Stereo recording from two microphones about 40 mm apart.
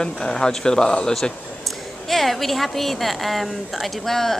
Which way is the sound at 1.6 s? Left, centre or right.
Centre.